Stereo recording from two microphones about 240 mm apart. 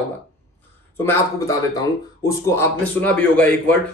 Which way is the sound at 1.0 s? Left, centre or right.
Centre.